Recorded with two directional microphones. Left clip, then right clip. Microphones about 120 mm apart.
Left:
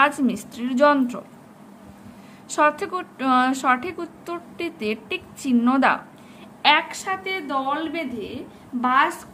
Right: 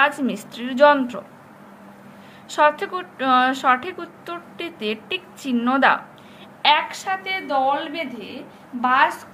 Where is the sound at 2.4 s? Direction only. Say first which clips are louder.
Right 2 dB; 50° left (ahead or behind).